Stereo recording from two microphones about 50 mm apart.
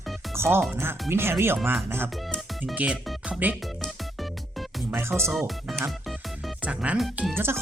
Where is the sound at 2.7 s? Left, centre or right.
Right.